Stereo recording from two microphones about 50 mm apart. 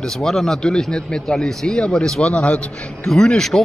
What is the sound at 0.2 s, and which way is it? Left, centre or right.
Speech, centre.